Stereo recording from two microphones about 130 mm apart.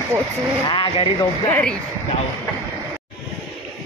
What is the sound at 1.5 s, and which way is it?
Speech, 10° left (ahead or behind).